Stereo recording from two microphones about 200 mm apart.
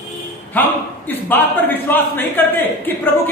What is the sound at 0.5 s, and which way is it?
A man's voice, 10° left (ahead or behind).